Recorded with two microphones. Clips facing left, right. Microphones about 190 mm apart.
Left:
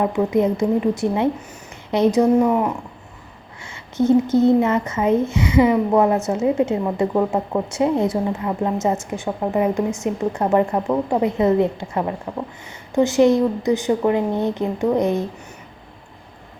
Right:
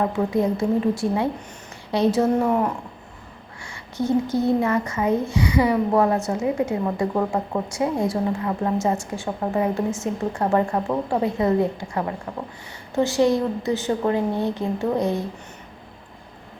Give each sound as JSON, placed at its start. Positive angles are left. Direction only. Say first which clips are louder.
{"t": 0.0, "sound": "speech", "louder": "left 3 dB", "side_deg": 20}
{"t": 3.9, "sound": "speech", "louder": "left 6 dB", "side_deg": 20}